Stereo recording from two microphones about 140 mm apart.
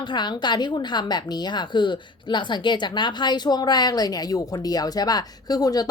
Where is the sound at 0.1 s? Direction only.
30° left (ahead or behind).